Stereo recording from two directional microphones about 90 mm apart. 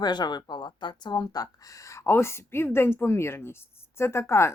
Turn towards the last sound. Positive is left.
turn(degrees=30)  # may be behind; listen again after turning